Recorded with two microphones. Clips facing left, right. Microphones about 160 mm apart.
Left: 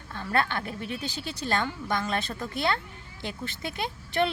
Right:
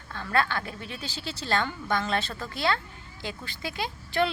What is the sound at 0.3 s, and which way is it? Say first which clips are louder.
Speech: even; 20° left (ahead or behind).